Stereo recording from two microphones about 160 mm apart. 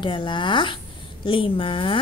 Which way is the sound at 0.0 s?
30° left (ahead or behind).